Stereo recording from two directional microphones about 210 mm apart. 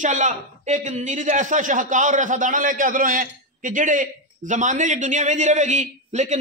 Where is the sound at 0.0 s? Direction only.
35° right (ahead or behind).